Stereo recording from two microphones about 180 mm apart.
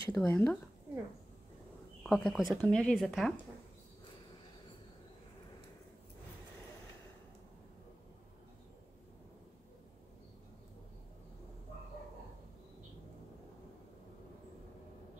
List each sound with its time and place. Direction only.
0.1 s speech: 5° left (ahead or behind)
2.0 s speech: centre (ahead or behind)